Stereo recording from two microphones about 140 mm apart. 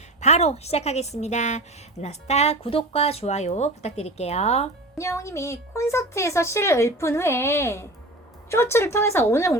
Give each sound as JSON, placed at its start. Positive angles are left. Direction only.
{"t": 0.2, "sound": "a woman's voice", "side_deg": 50}
{"t": 4.9, "sound": "speech", "side_deg": 20}